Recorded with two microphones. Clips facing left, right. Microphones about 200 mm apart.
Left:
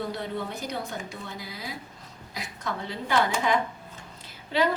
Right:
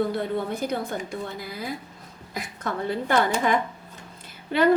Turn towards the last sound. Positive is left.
turn(degrees=-55)  # may be behind; listen again after turning